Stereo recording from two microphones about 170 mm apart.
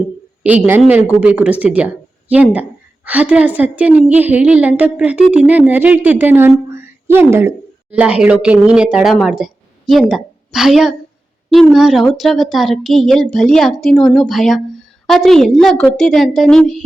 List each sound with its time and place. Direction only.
0.4 s a woman's voice: 10° right (ahead or behind)